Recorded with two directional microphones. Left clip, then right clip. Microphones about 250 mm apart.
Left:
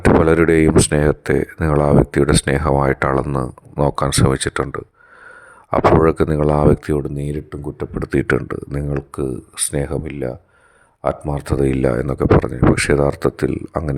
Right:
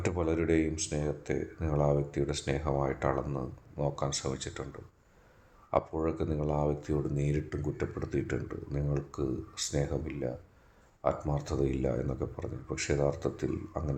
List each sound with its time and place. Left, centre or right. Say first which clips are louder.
0.0 s speech: left 18 dB; left